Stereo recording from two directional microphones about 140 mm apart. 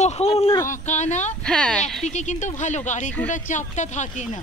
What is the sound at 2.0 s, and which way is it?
Speech, 55° left (ahead or behind).